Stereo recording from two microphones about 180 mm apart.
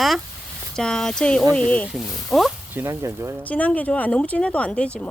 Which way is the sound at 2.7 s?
15° right (ahead or behind).